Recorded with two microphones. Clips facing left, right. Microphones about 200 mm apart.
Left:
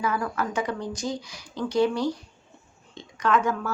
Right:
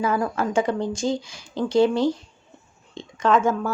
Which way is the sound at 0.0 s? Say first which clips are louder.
Right 4 dB; 25° right (ahead or behind).